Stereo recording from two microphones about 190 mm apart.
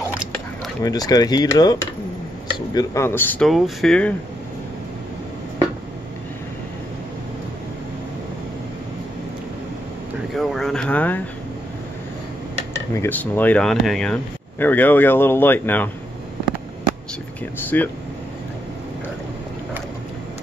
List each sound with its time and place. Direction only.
0.8 s cutlery: 20° left (ahead or behind)
2.7 s speech: 20° left (ahead or behind); by 4.1 s 5° left (ahead or behind)
10.3 s a sound: centre (ahead or behind)
12.9 s speech: 10° left (ahead or behind)
17.6 s speech: 10° left (ahead or behind)